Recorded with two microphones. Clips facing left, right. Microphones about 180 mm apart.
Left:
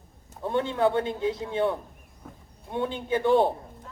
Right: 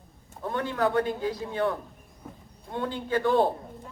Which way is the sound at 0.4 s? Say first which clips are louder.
Left 3 dB; 25° left (ahead or behind).